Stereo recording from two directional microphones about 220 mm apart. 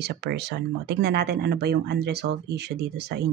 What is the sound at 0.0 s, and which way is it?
Speech, 50° right (ahead or behind).